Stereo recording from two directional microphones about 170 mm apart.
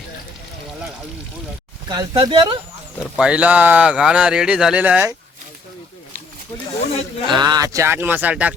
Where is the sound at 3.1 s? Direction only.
5° right (ahead or behind).